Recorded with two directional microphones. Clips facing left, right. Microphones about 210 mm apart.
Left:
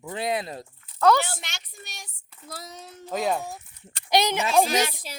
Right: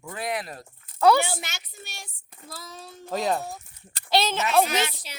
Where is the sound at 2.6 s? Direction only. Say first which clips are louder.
Right 1 dB; 20° left (ahead or behind).